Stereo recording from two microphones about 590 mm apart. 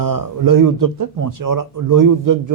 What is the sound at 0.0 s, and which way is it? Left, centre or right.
A man's voice, right.